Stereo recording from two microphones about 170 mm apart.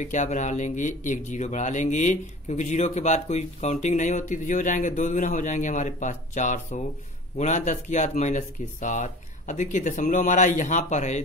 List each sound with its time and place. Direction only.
0.0 s speech: 45° left (ahead or behind)